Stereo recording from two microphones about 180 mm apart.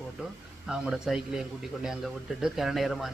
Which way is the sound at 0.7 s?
5° right (ahead or behind).